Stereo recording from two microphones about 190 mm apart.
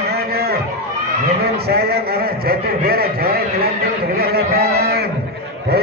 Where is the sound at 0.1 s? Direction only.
55° right (ahead or behind).